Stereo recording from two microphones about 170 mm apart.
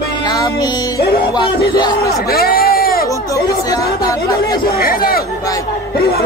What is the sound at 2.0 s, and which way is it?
Speech, 65° left (ahead or behind).